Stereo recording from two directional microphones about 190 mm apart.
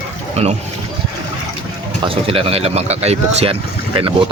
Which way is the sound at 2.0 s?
30° right (ahead or behind).